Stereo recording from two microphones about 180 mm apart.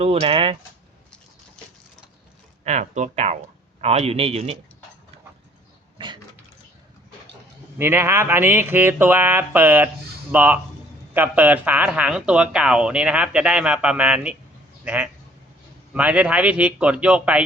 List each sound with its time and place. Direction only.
0.0 s a man's voice: 35° right (ahead or behind)
2.6 s a man's voice: 40° right (ahead or behind)
7.8 s speech: 15° right (ahead or behind)